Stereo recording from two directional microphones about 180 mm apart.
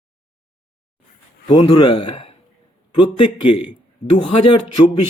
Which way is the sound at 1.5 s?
25° left (ahead or behind).